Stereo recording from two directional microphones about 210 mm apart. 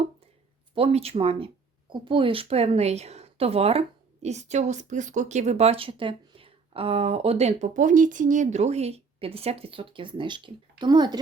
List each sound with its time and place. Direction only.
0.8 s speech: 30° right (ahead or behind)